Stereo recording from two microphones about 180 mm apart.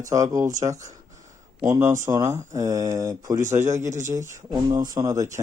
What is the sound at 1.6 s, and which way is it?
Speech, 15° right (ahead or behind).